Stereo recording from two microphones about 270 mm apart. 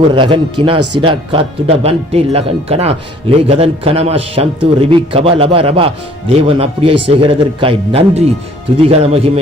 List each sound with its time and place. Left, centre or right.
0.1 s speech: centre